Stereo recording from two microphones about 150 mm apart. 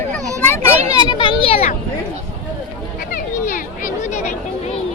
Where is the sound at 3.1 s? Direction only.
60° left (ahead or behind).